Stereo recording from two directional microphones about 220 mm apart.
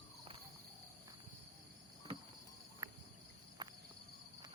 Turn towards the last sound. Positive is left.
turn(degrees=-20)  # may be behind; listen again after turning